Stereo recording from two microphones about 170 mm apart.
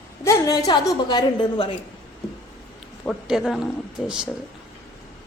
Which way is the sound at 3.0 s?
5° right (ahead or behind).